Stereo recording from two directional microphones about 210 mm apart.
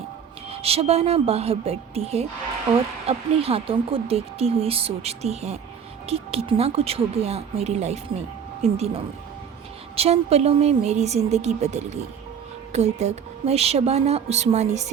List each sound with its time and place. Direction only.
0.5 s a woman's voice: 30° right (ahead or behind)